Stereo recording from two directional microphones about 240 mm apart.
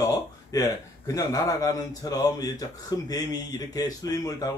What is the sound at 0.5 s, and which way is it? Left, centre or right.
A man's voice, centre.